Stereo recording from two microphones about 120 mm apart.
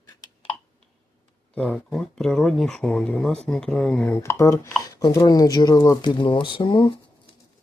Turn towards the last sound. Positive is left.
turn(degrees=45)  # may be behind; listen again after turning